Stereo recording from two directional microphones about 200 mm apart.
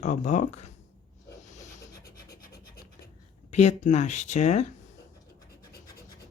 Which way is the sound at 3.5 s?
35° left (ahead or behind).